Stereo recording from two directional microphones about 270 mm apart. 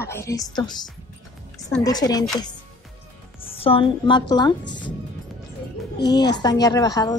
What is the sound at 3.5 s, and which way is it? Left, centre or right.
A woman's voice, left.